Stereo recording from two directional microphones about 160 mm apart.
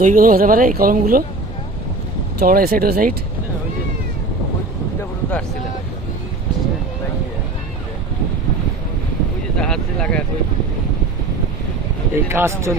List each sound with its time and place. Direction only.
0.0 s speech: 55° right (ahead or behind)
2.5 s speech: 65° right (ahead or behind)
9.6 s speech: 5° left (ahead or behind)
12.1 s speech: 15° right (ahead or behind)